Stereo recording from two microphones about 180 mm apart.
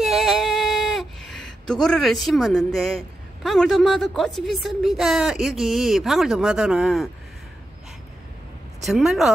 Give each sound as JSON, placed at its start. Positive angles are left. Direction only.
{"t": 0.0, "sound": "a sound", "side_deg": 0}
{"t": 3.4, "sound": "a woman's voice", "side_deg": 0}
{"t": 8.8, "sound": "a woman's voice", "side_deg": 0}